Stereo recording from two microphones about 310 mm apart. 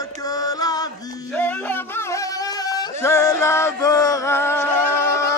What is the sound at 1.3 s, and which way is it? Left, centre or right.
Music, centre.